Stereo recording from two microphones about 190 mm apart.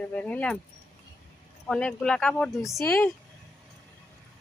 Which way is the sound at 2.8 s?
10° left (ahead or behind).